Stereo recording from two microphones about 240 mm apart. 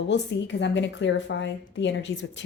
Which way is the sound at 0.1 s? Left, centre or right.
Left.